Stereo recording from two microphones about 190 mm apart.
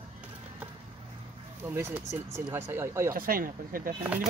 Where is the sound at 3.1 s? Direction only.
50° right (ahead or behind).